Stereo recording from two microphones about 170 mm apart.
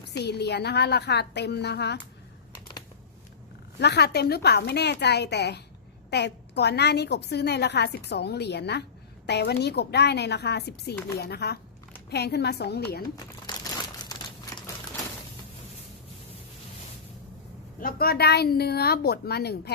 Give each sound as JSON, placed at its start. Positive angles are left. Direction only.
{"t": 0.1, "sound": "a woman's voice", "side_deg": 75}
{"t": 3.8, "sound": "a woman's voice", "side_deg": 80}
{"t": 14.1, "sound": "crumpling", "side_deg": 20}
{"t": 17.7, "sound": "a woman's voice", "side_deg": 60}